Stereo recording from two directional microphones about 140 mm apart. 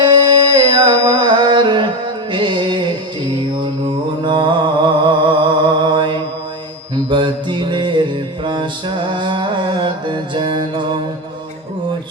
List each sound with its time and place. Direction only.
0.0 s carnatic music: 30° right (ahead or behind)
2.3 s music: 35° right (ahead or behind)
4.3 s music: 35° right (ahead or behind)